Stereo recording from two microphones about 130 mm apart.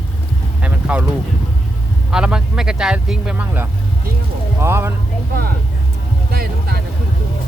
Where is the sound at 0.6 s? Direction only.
10° right (ahead or behind).